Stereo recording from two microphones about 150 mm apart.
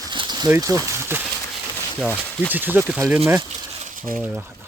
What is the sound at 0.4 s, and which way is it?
Speech, 20° right (ahead or behind).